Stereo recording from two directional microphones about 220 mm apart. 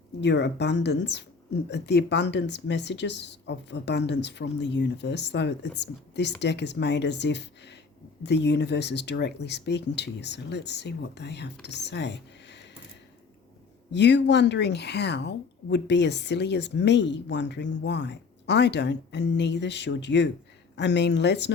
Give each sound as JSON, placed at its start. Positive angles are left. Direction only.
{"t": 0.2, "sound": "a woman's voice", "side_deg": 50}
{"t": 13.9, "sound": "a woman's voice", "side_deg": 50}